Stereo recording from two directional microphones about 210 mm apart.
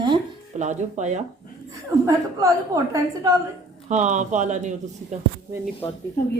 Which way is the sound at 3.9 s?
35° right (ahead or behind).